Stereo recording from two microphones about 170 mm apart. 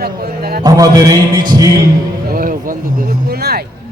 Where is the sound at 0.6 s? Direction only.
20° right (ahead or behind).